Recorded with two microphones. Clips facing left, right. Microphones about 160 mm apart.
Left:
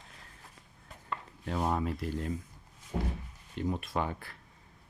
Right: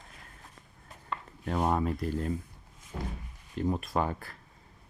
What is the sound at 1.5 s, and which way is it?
Speech, 50° right (ahead or behind).